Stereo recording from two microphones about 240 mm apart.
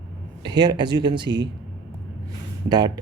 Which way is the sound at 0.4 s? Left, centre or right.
Centre.